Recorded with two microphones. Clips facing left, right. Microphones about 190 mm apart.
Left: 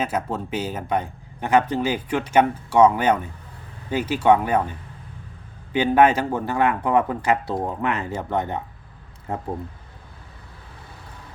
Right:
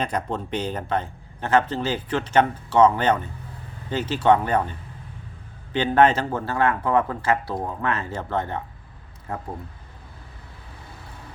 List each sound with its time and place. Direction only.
0.0 s a man's voice: 5° left (ahead or behind); by 9.4 s 25° left (ahead or behind)